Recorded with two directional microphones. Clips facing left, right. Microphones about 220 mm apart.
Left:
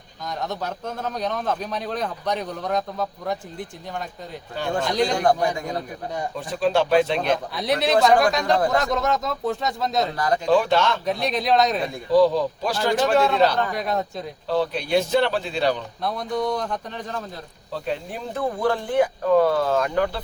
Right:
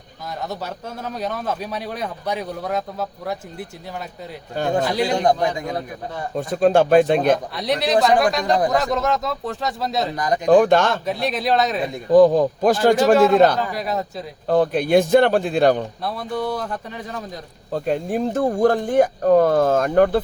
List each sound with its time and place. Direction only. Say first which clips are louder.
0.4 s a man's voice: left 1 dB; 5° right (ahead or behind)
4.6 s speech: right 5 dB; 45° right (ahead or behind)
4.9 s a man's voice: right 1 dB; 5° right (ahead or behind)
6.3 s speech: right 6 dB; 45° right (ahead or behind)
7.5 s speech: right 1 dB; centre (ahead or behind)
10.2 s a man's voice: right 2 dB; 15° right (ahead or behind)
10.5 s speech: right 6 dB; 50° right (ahead or behind)
11.0 s speech: right 1 dB; centre (ahead or behind)
12.1 s speech: right 5 dB; 50° right (ahead or behind)
13.6 s speech: even; 5° right (ahead or behind)
14.4 s speech: right 6 dB; 50° right (ahead or behind)
16.0 s speech: left 2 dB; 5° right (ahead or behind)
17.7 s speech: right 7 dB; 45° right (ahead or behind)